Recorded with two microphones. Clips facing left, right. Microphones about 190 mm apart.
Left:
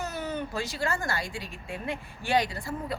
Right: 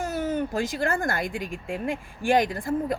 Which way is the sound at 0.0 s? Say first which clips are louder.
Right 6 dB; 50° right (ahead or behind).